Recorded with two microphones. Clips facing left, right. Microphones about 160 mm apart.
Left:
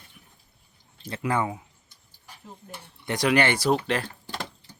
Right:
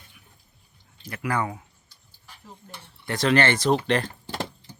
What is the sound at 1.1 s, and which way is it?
Speech, 25° left (ahead or behind).